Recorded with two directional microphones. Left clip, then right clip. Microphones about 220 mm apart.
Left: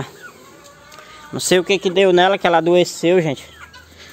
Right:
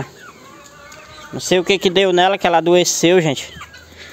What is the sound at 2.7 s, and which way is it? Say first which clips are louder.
Speech: right 2 dB; 20° right (ahead or behind).